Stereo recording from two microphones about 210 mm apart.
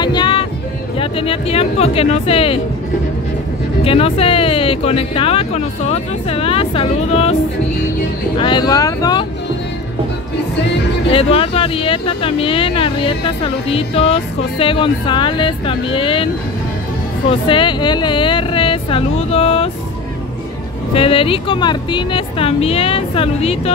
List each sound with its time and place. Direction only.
0.0 s music: 20° left (ahead or behind)
0.9 s speech: 25° left (ahead or behind)
3.8 s speech: 25° left (ahead or behind)
8.4 s speech: 20° left (ahead or behind)
11.1 s speech: 25° left (ahead or behind)
17.3 s speech: 25° left (ahead or behind)
20.9 s speech: 25° left (ahead or behind)